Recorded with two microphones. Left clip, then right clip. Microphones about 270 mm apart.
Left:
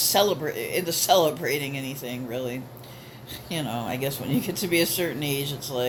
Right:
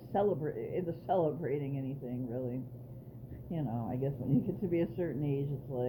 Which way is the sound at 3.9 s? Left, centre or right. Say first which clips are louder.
Left 5 dB; centre.